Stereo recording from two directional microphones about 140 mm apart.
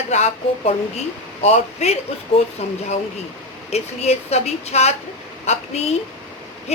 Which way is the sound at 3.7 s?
50° left (ahead or behind).